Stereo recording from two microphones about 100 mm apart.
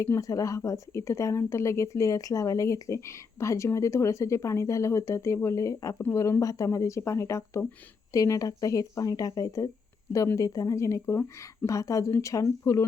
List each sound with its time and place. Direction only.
0.0 s speech: 30° left (ahead or behind)